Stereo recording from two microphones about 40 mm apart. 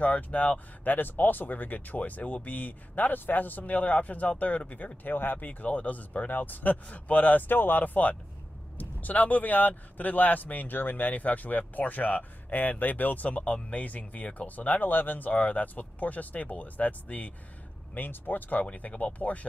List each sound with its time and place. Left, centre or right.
0.0 s speech: left
0.9 s speech: left
5.0 s speech: left
5.5 s speech: left
13.4 s speech: left
17.9 s speech: left